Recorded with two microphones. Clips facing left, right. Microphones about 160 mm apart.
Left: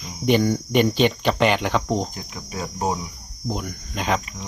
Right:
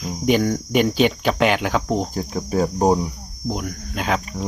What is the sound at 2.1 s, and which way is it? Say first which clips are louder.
Cricket: right 11 dB; 40° right (ahead or behind).